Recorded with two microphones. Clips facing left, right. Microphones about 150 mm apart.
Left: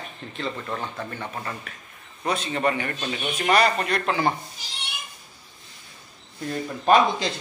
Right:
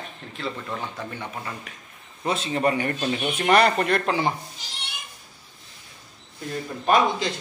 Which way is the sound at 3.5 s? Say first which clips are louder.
Right 2 dB; 55° right (ahead or behind).